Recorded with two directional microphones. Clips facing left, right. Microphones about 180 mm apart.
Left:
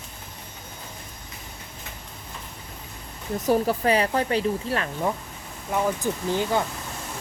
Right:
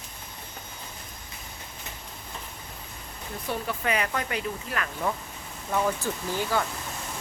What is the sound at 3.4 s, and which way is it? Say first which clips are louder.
Speech: left 9 dB; 40° left (ahead or behind).